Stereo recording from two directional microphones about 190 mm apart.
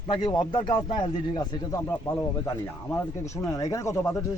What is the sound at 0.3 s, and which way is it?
Speech, 25° left (ahead or behind).